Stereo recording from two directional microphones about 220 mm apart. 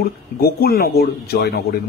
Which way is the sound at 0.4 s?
45° left (ahead or behind).